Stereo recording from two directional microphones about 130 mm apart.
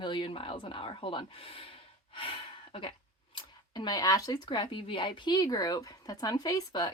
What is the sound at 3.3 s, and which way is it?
Speech, 35° left (ahead or behind).